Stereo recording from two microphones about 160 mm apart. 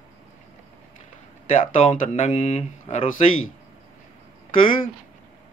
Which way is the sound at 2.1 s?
45° left (ahead or behind).